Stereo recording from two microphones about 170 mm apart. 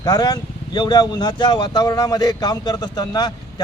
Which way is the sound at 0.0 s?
25° left (ahead or behind).